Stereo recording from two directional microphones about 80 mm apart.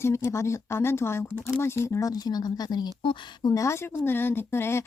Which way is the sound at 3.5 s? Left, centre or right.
Left.